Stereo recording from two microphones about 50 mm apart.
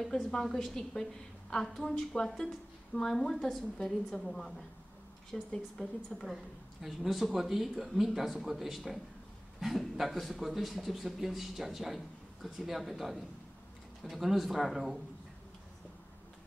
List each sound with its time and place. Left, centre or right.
0.0 s a woman's voice: centre
6.3 s a man's voice: centre